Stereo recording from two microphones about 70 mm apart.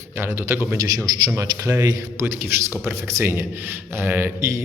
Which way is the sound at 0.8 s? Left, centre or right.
Right.